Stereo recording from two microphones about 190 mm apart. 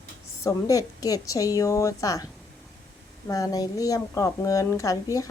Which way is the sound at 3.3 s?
20° left (ahead or behind).